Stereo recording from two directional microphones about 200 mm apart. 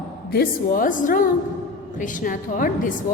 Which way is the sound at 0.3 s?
45° left (ahead or behind).